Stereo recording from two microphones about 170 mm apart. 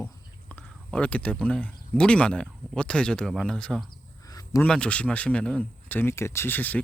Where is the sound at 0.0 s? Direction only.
10° left (ahead or behind).